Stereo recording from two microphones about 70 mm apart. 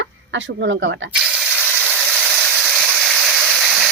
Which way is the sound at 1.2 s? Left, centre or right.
Centre.